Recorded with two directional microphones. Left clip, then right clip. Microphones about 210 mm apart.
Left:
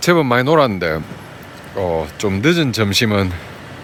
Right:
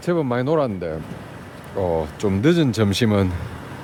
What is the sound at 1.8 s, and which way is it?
Speech, 5° right (ahead or behind).